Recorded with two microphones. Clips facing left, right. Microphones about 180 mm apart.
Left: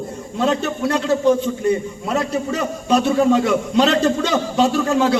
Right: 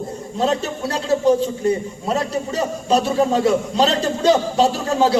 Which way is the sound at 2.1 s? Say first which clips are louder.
Left 1 dB; 35° right (ahead or behind).